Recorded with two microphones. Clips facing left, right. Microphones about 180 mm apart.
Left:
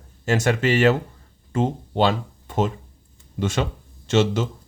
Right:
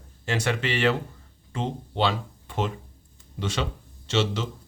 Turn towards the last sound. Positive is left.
turn(degrees=50)  # may be behind; listen again after turning